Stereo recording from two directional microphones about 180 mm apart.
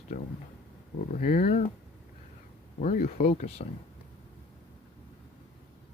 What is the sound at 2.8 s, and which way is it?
Speech, 45° left (ahead or behind).